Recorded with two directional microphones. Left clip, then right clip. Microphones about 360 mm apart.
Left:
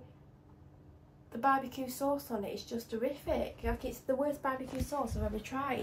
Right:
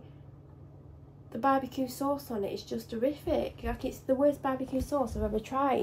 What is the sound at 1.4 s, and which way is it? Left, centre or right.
A woman's voice, centre.